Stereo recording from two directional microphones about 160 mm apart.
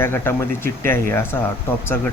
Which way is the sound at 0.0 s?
15° left (ahead or behind).